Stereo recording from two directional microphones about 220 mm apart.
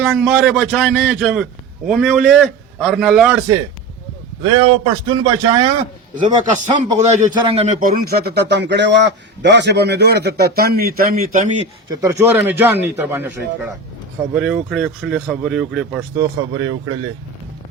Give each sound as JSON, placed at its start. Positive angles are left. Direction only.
{"t": 0.0, "sound": "speech", "side_deg": -5}
{"t": 4.4, "sound": "a man's voice", "side_deg": -20}
{"t": 6.2, "sound": "a man's voice", "side_deg": -35}
{"t": 11.9, "sound": "a man's voice", "side_deg": -10}
{"t": 16.1, "sound": "a man's voice", "side_deg": -15}